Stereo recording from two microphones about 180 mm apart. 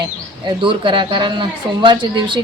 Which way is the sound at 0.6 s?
25° right (ahead or behind).